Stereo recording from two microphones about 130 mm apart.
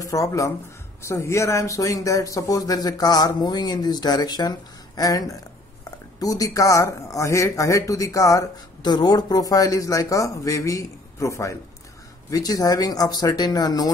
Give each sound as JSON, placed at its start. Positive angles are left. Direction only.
{"t": 0.0, "sound": "speech", "side_deg": 25}